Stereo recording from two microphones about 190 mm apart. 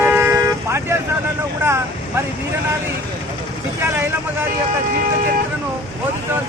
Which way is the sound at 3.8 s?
10° right (ahead or behind).